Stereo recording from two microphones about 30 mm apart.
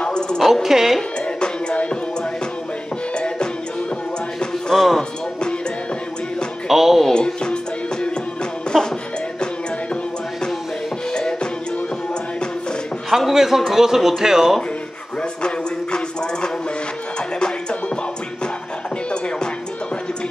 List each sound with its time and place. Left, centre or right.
0.0 s a sound: left
0.5 s speech: centre
1.2 s music: left
4.7 s music: centre
6.7 s music: centre
7.2 s music: left
8.7 s music: centre
11.1 s music: left
13.3 s speech: centre
15.4 s music: left
19.0 s music: left